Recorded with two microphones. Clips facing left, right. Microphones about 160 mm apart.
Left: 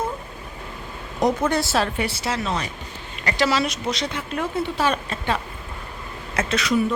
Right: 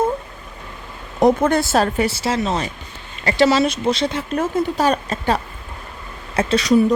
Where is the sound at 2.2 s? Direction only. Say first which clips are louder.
Right 5 dB; 30° right (ahead or behind).